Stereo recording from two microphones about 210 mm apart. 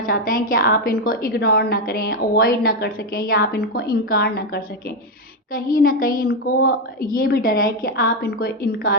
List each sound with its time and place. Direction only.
0.0 s a woman's voice: 40° left (ahead or behind)